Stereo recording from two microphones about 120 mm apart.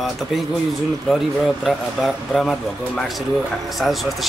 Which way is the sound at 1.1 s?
Centre (ahead or behind).